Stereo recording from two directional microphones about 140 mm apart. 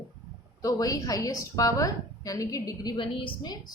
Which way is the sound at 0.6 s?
25° left (ahead or behind).